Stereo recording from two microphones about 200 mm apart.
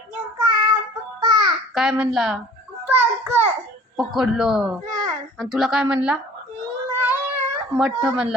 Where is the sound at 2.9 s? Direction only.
10° right (ahead or behind).